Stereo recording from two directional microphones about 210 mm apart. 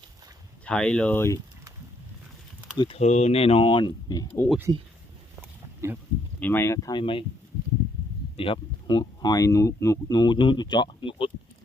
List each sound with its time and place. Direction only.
0.6 s speech: 5° left (ahead or behind)
2.7 s speech: 25° left (ahead or behind)
4.3 s speech: 10° left (ahead or behind)
5.4 s a sound: 10° right (ahead or behind)
6.4 s speech: 10° left (ahead or behind)
8.4 s speech: 25° left (ahead or behind)